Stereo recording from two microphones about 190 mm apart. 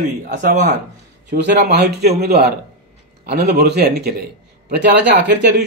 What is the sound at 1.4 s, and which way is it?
Speech, 60° right (ahead or behind).